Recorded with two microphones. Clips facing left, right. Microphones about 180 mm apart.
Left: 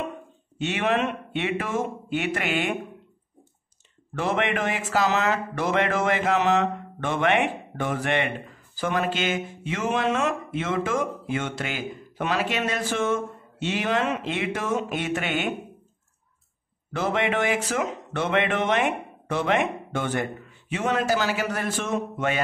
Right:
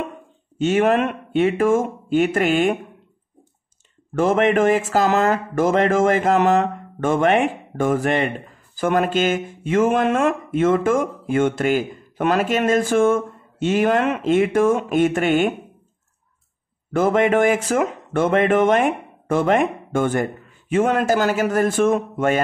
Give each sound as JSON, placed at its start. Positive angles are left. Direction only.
{"t": 0.6, "sound": "speech", "side_deg": -45}
{"t": 4.1, "sound": "speech", "side_deg": -45}
{"t": 16.9, "sound": "speech", "side_deg": -50}